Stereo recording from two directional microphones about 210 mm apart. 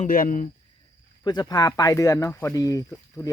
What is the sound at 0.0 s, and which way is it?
Speech, 40° left (ahead or behind).